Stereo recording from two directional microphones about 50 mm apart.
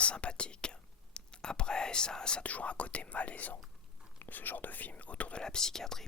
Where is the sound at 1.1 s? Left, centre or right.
Centre.